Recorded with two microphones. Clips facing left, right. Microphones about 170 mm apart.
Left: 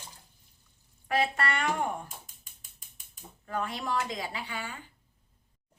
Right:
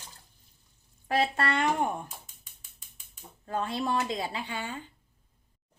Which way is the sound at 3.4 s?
25° right (ahead or behind).